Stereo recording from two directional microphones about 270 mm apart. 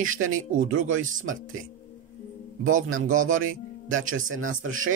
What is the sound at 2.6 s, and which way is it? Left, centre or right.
Speech, right.